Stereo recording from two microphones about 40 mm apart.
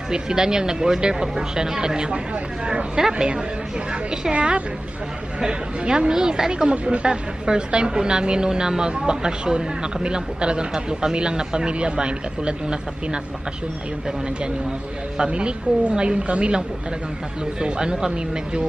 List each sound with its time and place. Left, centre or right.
0.1 s a woman's voice: centre
5.4 s a woman's voice: right
15.1 s a woman's voice: right